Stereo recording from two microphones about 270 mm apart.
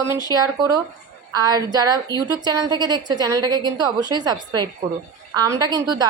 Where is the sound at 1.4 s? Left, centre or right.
Centre.